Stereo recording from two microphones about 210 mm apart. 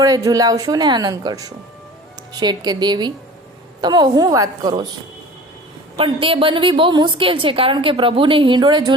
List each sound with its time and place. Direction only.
0.0 s a woman's voice: 15° right (ahead or behind)
6.0 s a woman's voice: 25° right (ahead or behind)